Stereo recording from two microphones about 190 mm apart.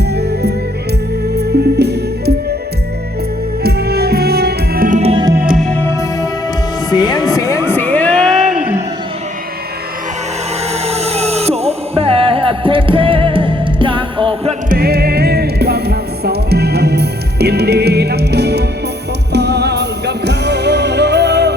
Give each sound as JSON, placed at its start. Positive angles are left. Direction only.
{"t": 0.1, "sound": "music", "side_deg": -60}
{"t": 3.6, "sound": "music", "side_deg": -55}
{"t": 5.5, "sound": "music", "side_deg": 0}
{"t": 6.9, "sound": "music", "side_deg": 20}
{"t": 10.8, "sound": "music", "side_deg": -35}
{"t": 14.7, "sound": "music", "side_deg": -55}